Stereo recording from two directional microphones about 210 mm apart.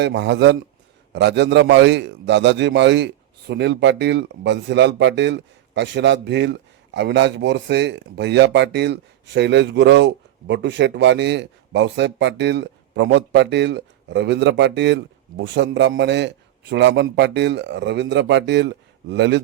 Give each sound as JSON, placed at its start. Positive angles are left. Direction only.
{"t": 0.0, "sound": "a man's voice", "side_deg": -55}